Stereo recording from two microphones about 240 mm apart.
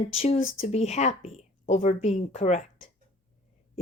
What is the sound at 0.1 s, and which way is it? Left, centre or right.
Speech, left.